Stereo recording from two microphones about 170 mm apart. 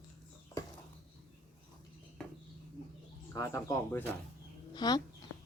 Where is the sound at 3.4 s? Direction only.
20° left (ahead or behind).